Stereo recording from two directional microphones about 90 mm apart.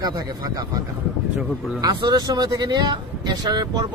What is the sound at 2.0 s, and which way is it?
A man's voice, 55° right (ahead or behind).